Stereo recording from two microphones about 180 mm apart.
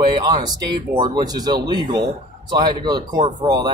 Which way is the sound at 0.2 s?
25° right (ahead or behind).